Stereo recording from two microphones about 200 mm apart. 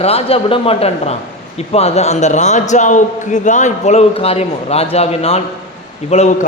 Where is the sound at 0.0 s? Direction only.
30° left (ahead or behind).